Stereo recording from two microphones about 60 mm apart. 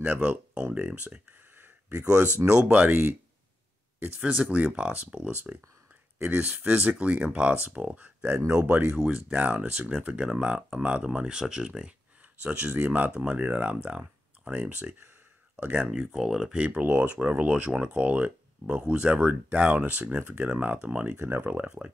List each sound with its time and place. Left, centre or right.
0.0 s speech: right
1.6 s a sound: right
2.5 s speech: right
4.2 s speech: centre
6.3 s speech: right
12.4 s speech: right
16.0 s speech: centre
16.8 s speech: right
21.2 s speech: right
21.6 s speech: centre